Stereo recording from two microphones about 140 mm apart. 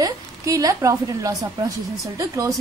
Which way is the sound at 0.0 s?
25° right (ahead or behind).